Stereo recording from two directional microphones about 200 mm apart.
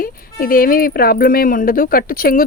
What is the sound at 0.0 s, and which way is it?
Speech, 45° left (ahead or behind).